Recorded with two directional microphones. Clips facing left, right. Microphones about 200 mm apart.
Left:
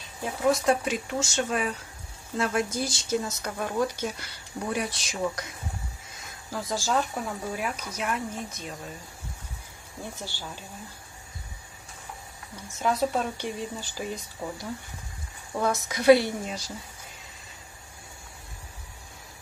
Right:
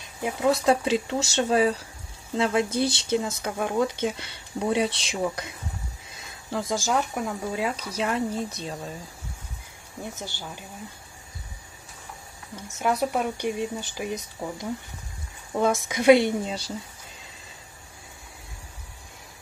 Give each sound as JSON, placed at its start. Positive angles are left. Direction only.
{"t": 0.5, "sound": "speech", "side_deg": -30}
{"t": 6.5, "sound": "speech", "side_deg": -25}
{"t": 10.1, "sound": "speech", "side_deg": -20}
{"t": 12.7, "sound": "speech", "side_deg": -15}